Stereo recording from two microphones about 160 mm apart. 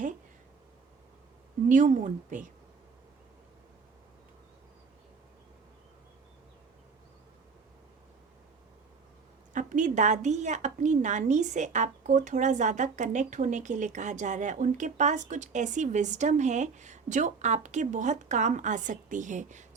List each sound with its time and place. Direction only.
1.6 s a woman's voice: 50° right (ahead or behind)
9.5 s a woman's voice: 55° right (ahead or behind)